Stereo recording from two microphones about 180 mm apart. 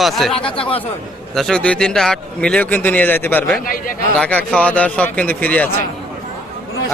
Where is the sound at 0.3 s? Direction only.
30° left (ahead or behind).